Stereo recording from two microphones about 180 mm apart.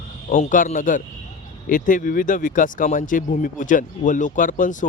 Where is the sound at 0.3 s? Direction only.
45° left (ahead or behind).